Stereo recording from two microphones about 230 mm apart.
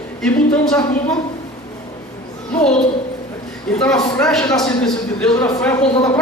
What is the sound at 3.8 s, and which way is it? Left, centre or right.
A man's voice, centre.